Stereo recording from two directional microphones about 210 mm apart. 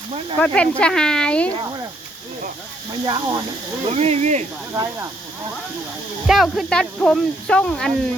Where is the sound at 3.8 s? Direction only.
30° right (ahead or behind).